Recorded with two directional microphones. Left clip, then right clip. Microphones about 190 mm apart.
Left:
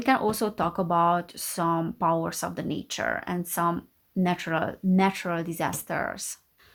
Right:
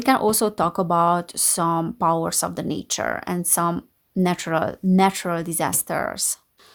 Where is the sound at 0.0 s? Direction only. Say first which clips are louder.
Right 5 dB; 40° right (ahead or behind).